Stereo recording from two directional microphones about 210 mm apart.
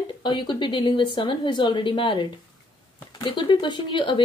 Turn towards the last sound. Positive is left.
turn(degrees=20)  # may be behind; listen again after turning